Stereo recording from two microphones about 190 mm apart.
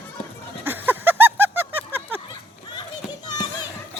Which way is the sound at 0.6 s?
10° right (ahead or behind).